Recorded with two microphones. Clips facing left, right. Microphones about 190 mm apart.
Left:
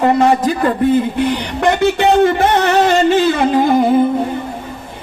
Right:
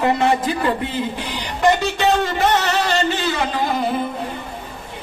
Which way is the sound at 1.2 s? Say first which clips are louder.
Left 4 dB; 65° left (ahead or behind).